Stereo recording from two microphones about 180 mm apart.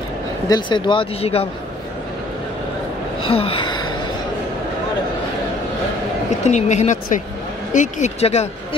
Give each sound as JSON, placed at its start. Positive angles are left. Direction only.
{"t": 0.5, "sound": "speech", "side_deg": 25}
{"t": 3.2, "sound": "gasp", "side_deg": 30}
{"t": 6.4, "sound": "speech", "side_deg": 40}